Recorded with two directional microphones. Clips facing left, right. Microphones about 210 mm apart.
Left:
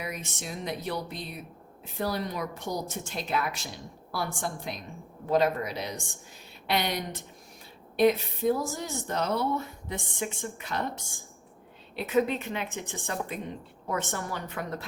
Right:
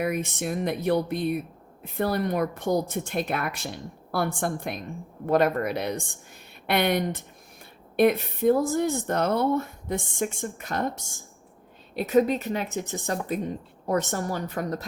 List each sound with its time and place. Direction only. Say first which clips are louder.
0.0 s a woman's voice: right 10 dB; 55° right (ahead or behind); by 14.8 s 40° right (ahead or behind)